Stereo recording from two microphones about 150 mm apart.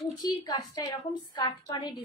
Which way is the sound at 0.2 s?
30° left (ahead or behind).